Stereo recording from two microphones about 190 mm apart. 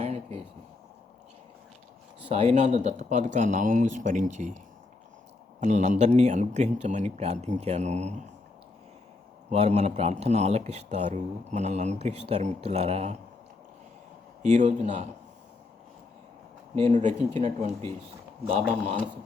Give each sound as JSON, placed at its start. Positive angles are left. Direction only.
{"t": 0.0, "sound": "a sound", "side_deg": -30}
{"t": 2.3, "sound": "a man's voice", "side_deg": -35}
{"t": 9.5, "sound": "a man's voice", "side_deg": -35}
{"t": 14.4, "sound": "a man's voice", "side_deg": -40}
{"t": 16.7, "sound": "a man's voice", "side_deg": -35}